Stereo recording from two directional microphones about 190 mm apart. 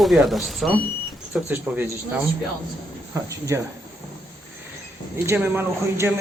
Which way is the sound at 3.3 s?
15° right (ahead or behind).